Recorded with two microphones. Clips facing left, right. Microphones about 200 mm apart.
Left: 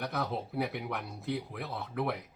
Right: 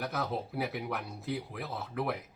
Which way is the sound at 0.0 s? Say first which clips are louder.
Even; centre (ahead or behind).